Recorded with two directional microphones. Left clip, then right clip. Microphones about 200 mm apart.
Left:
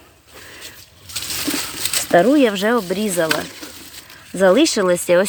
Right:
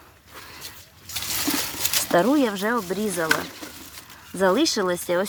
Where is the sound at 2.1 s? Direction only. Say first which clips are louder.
Left 7 dB; 20° left (ahead or behind).